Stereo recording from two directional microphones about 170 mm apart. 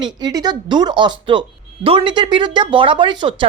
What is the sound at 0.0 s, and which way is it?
Speech, 25° right (ahead or behind).